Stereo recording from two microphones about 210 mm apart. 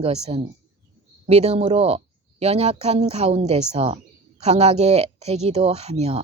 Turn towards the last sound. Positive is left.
turn(degrees=-30)  # may be behind; listen again after turning